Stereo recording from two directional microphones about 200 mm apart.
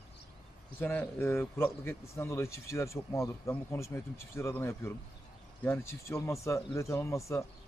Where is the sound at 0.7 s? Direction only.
10° left (ahead or behind).